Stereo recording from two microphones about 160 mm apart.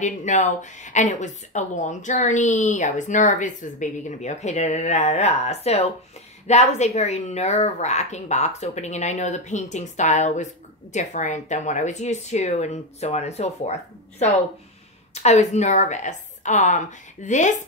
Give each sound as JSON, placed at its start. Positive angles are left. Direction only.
{"t": 0.0, "sound": "speech", "side_deg": 50}